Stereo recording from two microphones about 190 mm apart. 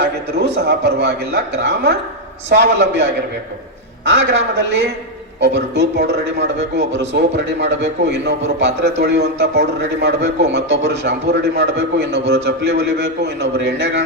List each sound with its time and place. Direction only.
0.3 s a man's voice: 60° right (ahead or behind)